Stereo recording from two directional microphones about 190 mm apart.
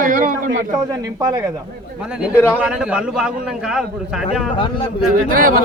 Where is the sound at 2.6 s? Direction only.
5° right (ahead or behind).